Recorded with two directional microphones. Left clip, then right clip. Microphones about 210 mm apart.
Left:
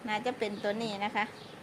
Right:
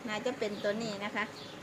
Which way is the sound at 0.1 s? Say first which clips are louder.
Left 2 dB; 50° left (ahead or behind).